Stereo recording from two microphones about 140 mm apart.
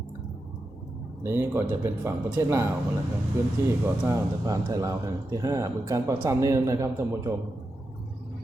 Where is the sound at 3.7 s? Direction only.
15° right (ahead or behind).